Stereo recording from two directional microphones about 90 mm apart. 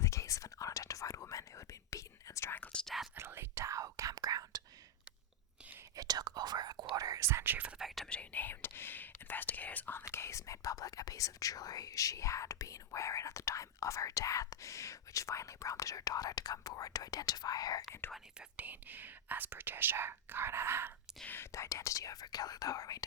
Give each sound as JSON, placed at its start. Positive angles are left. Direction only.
{"t": 0.0, "sound": "whispering", "side_deg": 35}
{"t": 2.7, "sound": "whispering", "side_deg": 0}
{"t": 3.2, "sound": "whispering", "side_deg": -30}
{"t": 6.0, "sound": "whispering", "side_deg": -45}
{"t": 7.8, "sound": "whispering", "side_deg": 0}
{"t": 8.0, "sound": "whispering", "side_deg": 15}
{"t": 10.0, "sound": "whispering", "side_deg": 30}
{"t": 18.3, "sound": "speech", "side_deg": -15}
{"t": 21.2, "sound": "speech", "side_deg": 25}